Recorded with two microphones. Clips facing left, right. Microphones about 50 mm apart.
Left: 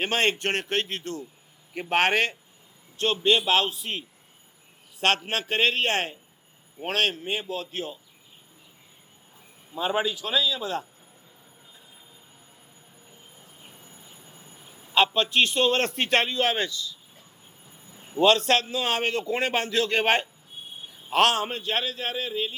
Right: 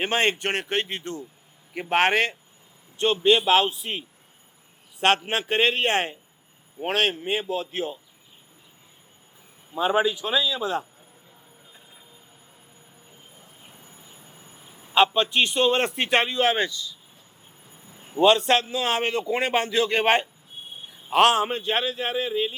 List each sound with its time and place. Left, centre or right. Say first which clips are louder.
0.0 s a man's voice: right 1 dB; centre
9.7 s a man's voice: right 4 dB; centre
13.7 s train: even; right
14.9 s a man's voice: right 2 dB; centre
15.4 s a man's voice: right 1 dB; centre
17.9 s a sound: right 1 dB; right
18.2 s a man's voice: right 2 dB; centre